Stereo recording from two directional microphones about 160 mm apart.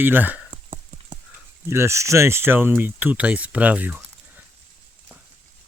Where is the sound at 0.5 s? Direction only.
35° right (ahead or behind).